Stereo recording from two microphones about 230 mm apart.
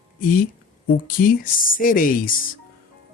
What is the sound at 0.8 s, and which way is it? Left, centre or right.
Speech, left.